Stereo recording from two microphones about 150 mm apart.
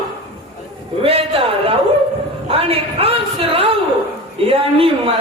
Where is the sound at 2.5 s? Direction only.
40° right (ahead or behind).